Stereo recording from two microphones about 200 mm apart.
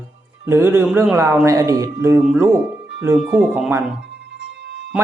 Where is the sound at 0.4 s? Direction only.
10° right (ahead or behind).